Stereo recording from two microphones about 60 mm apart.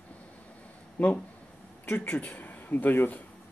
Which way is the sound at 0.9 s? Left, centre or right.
Left.